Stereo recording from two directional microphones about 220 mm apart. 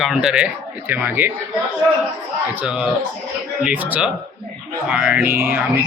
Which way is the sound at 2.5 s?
5° right (ahead or behind).